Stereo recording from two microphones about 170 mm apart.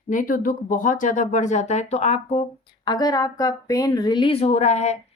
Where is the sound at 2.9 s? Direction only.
25° left (ahead or behind).